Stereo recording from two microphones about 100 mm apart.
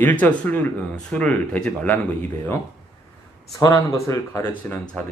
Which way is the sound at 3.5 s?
35° left (ahead or behind).